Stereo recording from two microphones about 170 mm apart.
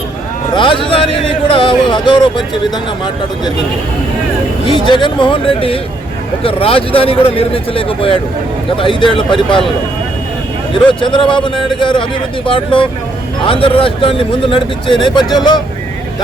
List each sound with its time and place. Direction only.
0.5 s a sound: 30° left (ahead or behind)
4.6 s speech: 30° left (ahead or behind)
11.0 s speech: 30° left (ahead or behind)